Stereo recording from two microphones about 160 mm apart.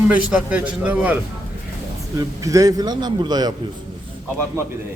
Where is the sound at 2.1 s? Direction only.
20° right (ahead or behind).